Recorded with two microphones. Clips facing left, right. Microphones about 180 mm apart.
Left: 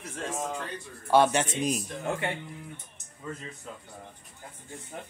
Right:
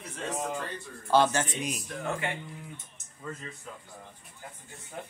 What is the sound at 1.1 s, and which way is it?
Speech, 15° left (ahead or behind).